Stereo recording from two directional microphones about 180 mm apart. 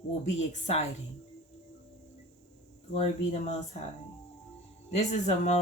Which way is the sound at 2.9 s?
40° left (ahead or behind).